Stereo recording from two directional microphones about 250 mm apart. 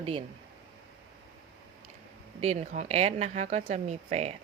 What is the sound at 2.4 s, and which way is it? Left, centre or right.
Speech, right.